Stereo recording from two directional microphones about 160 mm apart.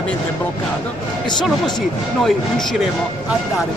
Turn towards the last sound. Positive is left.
turn(degrees=0)  # may be behind; listen again after turning